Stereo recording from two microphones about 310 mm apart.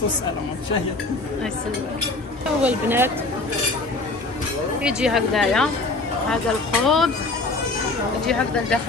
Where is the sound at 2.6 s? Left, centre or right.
Centre.